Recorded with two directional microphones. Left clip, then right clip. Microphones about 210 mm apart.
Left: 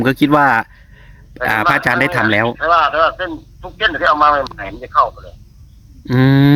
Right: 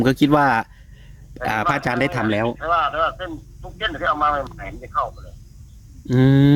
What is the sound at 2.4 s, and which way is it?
Speech, 45° left (ahead or behind).